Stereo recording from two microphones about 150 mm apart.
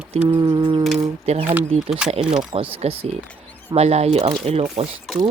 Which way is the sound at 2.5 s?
40° right (ahead or behind).